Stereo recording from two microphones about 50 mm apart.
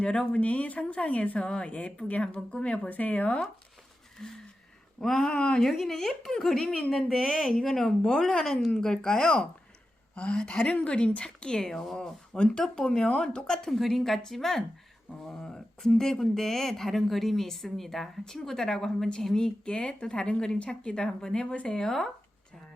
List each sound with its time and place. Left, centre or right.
0.0 s speech: left
4.2 s speech: centre
10.6 s speech: left; by 22.1 s centre